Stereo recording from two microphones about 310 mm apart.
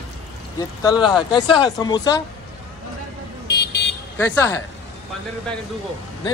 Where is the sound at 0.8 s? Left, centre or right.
Centre.